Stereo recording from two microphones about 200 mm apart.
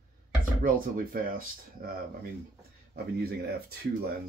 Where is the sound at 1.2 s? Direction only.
45° right (ahead or behind).